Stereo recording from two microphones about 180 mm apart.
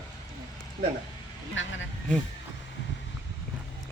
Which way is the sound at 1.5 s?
90° left.